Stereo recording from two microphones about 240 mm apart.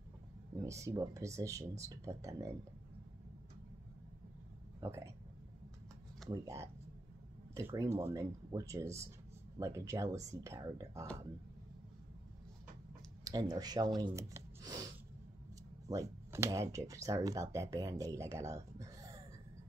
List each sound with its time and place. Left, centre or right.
0.6 s speech: centre
4.7 s speech: centre
6.3 s speech: centre
13.2 s speech: centre
15.9 s speech: centre